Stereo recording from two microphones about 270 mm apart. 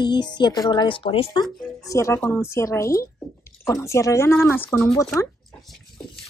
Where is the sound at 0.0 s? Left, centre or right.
Centre.